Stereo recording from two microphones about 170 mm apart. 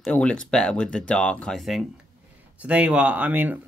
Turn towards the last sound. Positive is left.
turn(degrees=-10)  # may be behind; listen again after turning